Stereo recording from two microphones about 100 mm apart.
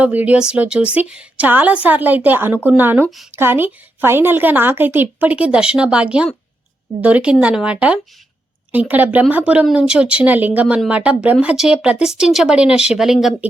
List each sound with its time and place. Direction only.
0.0 s a woman's voice: 15° right (ahead or behind)